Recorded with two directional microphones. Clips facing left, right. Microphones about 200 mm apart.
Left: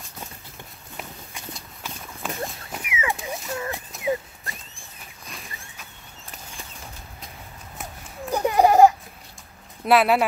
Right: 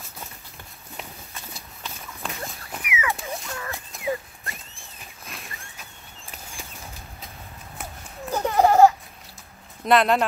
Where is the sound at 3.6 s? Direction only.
20° left (ahead or behind).